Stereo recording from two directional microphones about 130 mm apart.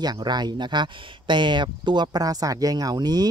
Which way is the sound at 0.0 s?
35° right (ahead or behind).